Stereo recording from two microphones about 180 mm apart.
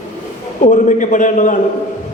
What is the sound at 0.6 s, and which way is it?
Speech, 45° left (ahead or behind).